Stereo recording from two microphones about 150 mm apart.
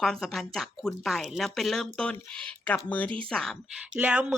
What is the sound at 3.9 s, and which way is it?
Speech, 10° right (ahead or behind).